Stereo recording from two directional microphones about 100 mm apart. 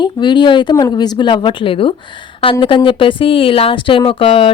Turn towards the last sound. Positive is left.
turn(degrees=65)  # may be behind; listen again after turning